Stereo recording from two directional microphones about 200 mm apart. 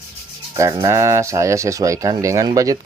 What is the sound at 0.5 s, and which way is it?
Speech, 15° right (ahead or behind).